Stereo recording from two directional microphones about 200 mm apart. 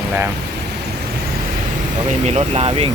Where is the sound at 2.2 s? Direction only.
30° right (ahead or behind).